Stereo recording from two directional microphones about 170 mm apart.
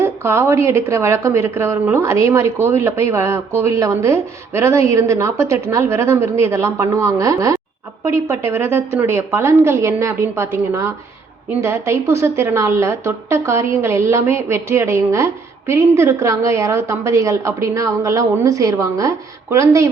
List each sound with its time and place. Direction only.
0.0 s a woman's voice: 15° right (ahead or behind)